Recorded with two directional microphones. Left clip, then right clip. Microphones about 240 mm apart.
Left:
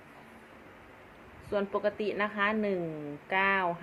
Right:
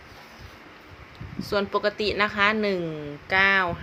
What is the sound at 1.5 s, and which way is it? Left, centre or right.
A woman's voice, right.